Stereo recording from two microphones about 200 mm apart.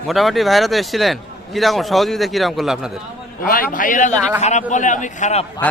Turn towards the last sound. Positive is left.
turn(degrees=35)  # may be behind; listen again after turning